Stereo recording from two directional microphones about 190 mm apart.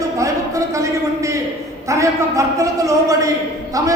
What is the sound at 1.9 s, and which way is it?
A man's voice, 15° right (ahead or behind).